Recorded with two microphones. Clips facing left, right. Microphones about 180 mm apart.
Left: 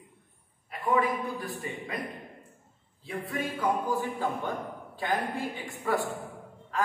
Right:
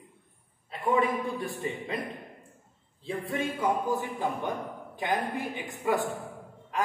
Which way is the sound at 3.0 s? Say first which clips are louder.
Right 2 dB; 25° right (ahead or behind).